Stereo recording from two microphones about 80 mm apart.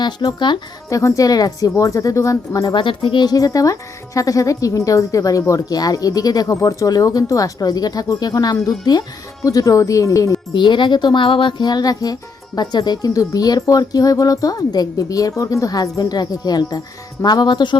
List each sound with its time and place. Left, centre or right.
0.0 s speech: left
0.9 s speech: left
2.7 s speech: left
10.5 s speech: left